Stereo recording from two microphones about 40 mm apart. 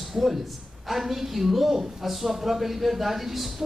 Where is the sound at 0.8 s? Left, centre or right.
Centre.